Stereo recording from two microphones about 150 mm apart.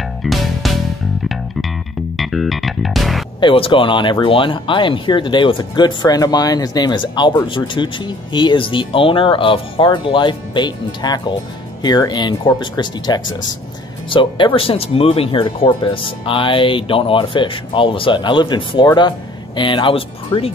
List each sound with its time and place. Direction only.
0.2 s music: centre (ahead or behind)
2.1 s music: centre (ahead or behind)
3.3 s speech: 35° left (ahead or behind)